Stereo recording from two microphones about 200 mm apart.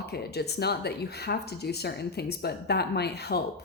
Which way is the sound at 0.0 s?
55° left (ahead or behind).